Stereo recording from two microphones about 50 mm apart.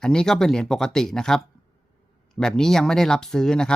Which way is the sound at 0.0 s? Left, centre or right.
Centre.